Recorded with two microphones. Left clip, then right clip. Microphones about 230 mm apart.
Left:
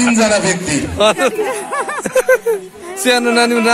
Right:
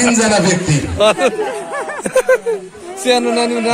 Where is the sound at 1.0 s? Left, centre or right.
Centre.